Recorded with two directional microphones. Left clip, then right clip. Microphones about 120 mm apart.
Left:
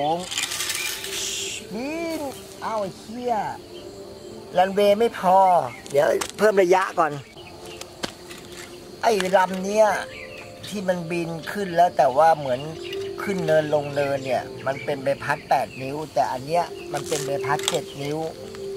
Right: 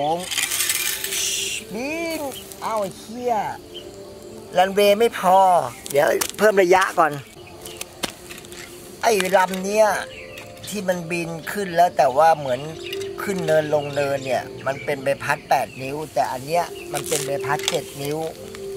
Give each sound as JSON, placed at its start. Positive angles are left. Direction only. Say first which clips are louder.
{"t": 0.0, "sound": "coin", "louder": "right 2 dB", "side_deg": -10}
{"t": 4.6, "sound": "speech", "louder": "right 2 dB", "side_deg": -15}
{"t": 9.0, "sound": "speech", "louder": "right 2 dB", "side_deg": -10}
{"t": 17.6, "sound": "speech", "louder": "right 1 dB", "side_deg": 10}
{"t": 18.0, "sound": "speech", "louder": "right 2 dB", "side_deg": -15}